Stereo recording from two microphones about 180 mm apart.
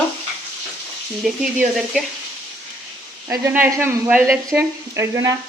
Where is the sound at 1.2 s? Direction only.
Centre (ahead or behind).